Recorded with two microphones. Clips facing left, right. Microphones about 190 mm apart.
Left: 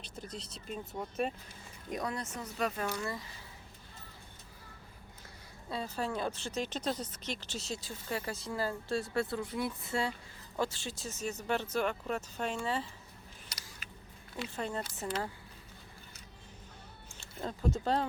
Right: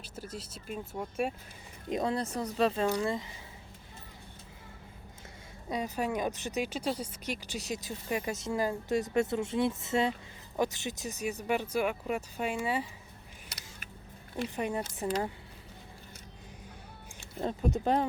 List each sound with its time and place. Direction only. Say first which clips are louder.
0.0 s speech: right 2 dB; 5° right (ahead or behind)
1.9 s speech: right 6 dB; 25° right (ahead or behind)
5.6 s speech: right 4 dB; 15° right (ahead or behind)
14.4 s speech: right 4 dB; 15° right (ahead or behind)
17.4 s speech: right 4 dB; 20° right (ahead or behind)